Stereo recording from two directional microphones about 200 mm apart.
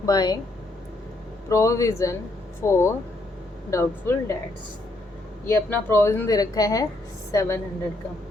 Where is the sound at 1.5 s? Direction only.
15° left (ahead or behind).